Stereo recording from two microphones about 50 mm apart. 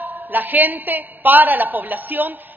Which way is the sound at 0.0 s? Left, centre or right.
Right.